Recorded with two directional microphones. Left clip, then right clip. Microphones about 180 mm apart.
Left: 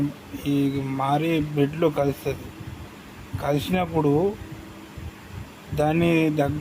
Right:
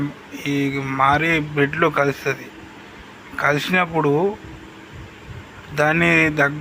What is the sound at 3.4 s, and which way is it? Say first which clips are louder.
Speech: right 7 dB; 15° left (ahead or behind).